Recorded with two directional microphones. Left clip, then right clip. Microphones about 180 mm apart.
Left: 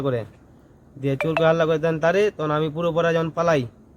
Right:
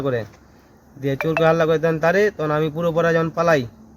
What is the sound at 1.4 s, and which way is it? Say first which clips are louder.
Speech: right 2 dB; 35° left (ahead or behind).